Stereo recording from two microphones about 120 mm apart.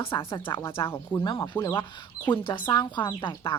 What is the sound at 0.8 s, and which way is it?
Speech, 20° left (ahead or behind).